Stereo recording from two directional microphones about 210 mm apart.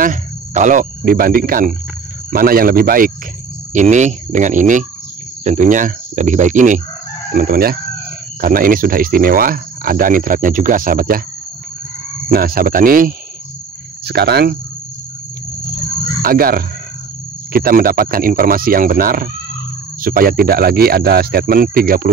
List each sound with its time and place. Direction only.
0.0 s speech: 35° right (ahead or behind)
12.3 s speech: 45° right (ahead or behind)
16.2 s speech: 45° right (ahead or behind)